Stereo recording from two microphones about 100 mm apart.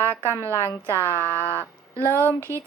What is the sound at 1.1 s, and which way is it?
Speech, 25° right (ahead or behind).